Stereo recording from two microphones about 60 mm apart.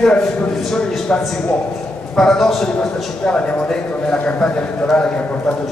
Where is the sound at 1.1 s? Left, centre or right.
Centre.